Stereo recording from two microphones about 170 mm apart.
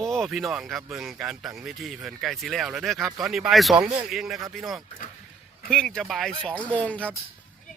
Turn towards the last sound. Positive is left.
turn(degrees=10)  # may be behind; listen again after turning